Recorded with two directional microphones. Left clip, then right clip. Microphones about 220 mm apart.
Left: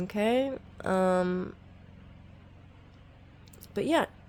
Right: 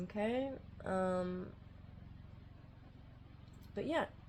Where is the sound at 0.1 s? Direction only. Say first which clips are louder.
Left 11 dB; 50° left (ahead or behind).